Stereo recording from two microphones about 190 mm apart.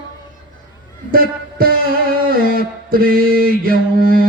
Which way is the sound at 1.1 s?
50° right (ahead or behind).